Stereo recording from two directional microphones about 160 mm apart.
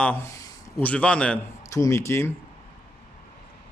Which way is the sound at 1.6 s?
20° left (ahead or behind).